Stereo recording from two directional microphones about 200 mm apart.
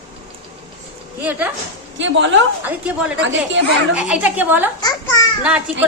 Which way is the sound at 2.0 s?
65° right (ahead or behind).